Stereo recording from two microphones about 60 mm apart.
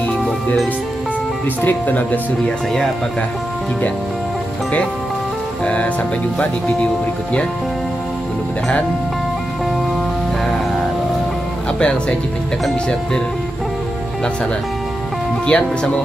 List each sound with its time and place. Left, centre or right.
1.6 s speech: left
11.8 s speech: centre
15.4 s speech: centre